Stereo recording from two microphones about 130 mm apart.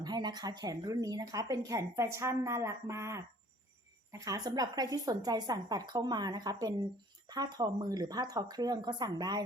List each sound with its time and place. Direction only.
0.0 s speech: 30° right (ahead or behind)